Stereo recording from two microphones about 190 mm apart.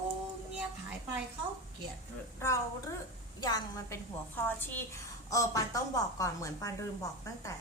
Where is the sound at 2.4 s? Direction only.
15° left (ahead or behind).